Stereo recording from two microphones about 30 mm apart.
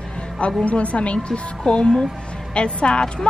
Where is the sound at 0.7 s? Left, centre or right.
Left.